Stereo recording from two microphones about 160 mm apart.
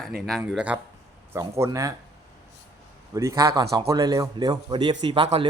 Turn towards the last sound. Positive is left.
turn(degrees=-35)  # may be behind; listen again after turning